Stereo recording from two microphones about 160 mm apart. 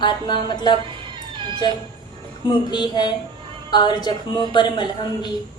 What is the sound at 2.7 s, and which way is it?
A woman's voice, 25° left (ahead or behind).